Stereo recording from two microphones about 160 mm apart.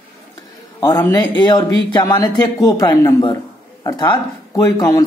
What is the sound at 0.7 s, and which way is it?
A man's voice, 20° left (ahead or behind).